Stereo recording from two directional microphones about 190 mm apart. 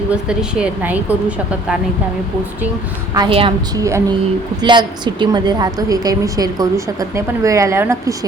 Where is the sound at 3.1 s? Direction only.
25° right (ahead or behind).